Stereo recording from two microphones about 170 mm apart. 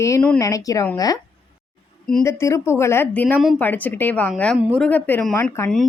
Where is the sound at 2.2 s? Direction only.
15° left (ahead or behind).